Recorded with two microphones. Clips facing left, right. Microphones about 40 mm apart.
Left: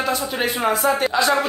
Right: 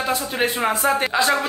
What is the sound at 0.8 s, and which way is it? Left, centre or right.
Speech, right.